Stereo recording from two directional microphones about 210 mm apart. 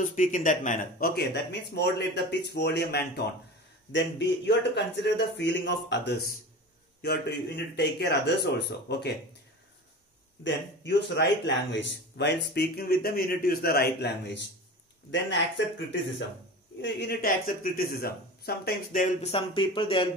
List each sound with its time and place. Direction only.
0.0 s a man's voice: 40° left (ahead or behind); by 9.1 s 55° left (ahead or behind)
10.4 s a man's voice: 60° left (ahead or behind); by 19.3 s 40° left (ahead or behind)
19.3 s speech: 25° left (ahead or behind)